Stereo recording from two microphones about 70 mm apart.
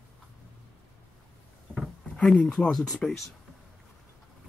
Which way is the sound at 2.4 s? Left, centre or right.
Centre.